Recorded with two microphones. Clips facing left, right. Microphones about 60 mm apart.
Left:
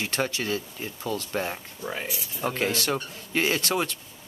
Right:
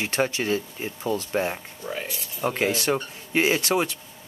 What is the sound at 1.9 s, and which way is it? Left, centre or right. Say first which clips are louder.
Rub: right 2 dB; centre.